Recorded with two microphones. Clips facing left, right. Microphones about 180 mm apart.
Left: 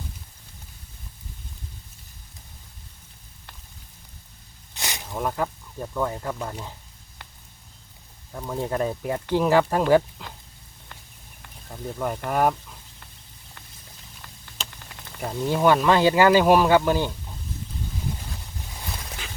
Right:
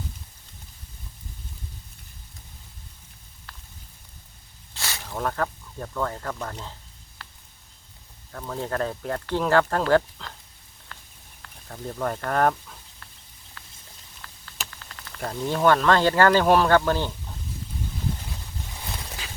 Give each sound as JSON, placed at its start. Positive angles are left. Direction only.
{"t": 4.7, "sound": "speech", "side_deg": 20}
{"t": 7.2, "sound": "a sound", "side_deg": 20}
{"t": 8.3, "sound": "speech", "side_deg": 10}
{"t": 10.9, "sound": "a sound", "side_deg": 20}
{"t": 11.7, "sound": "speech", "side_deg": 5}
{"t": 14.2, "sound": "speech", "side_deg": 15}